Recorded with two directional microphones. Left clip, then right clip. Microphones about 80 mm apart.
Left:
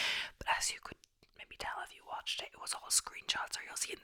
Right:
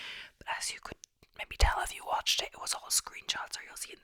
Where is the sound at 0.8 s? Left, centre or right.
Centre.